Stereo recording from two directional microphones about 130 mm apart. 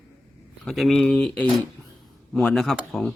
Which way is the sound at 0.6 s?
Centre (ahead or behind).